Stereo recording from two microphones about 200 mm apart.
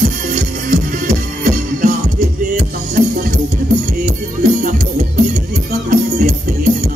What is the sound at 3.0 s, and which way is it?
Music, 40° right (ahead or behind).